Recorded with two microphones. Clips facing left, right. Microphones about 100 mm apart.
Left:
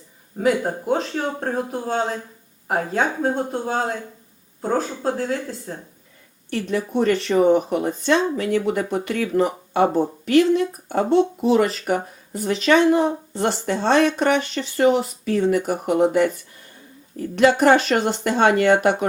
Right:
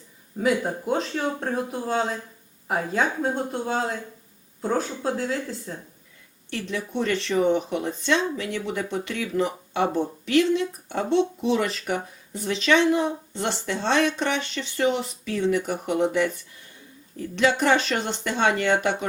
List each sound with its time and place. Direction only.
0.3 s speech: 40° left (ahead or behind)